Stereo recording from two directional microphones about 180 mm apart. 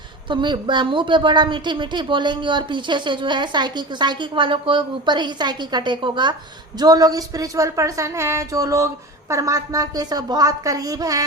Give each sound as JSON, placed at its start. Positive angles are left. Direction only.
{"t": 0.3, "sound": "a woman's voice", "side_deg": -25}